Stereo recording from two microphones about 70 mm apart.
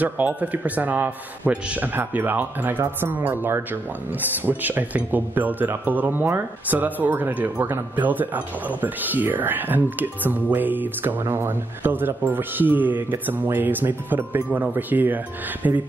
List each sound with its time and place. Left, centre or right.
0.0 s speech: right